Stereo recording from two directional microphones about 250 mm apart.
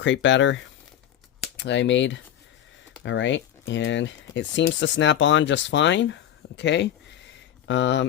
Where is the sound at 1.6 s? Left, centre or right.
Left.